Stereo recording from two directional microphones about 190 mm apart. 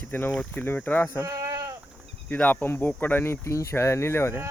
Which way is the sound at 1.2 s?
15° right (ahead or behind).